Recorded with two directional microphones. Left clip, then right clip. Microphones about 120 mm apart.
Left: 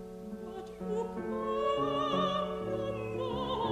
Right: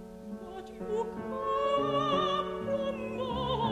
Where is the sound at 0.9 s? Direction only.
30° left (ahead or behind).